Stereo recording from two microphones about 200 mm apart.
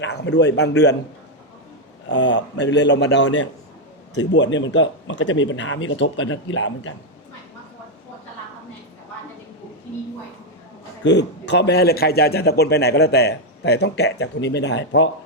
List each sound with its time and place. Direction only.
0.0 s a man's voice: 60° left (ahead or behind)
2.0 s a man's voice: 65° left (ahead or behind)
11.0 s a man's voice: 60° left (ahead or behind)